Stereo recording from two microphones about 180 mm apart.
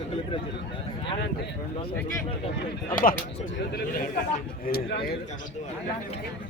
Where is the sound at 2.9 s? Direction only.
50° left (ahead or behind).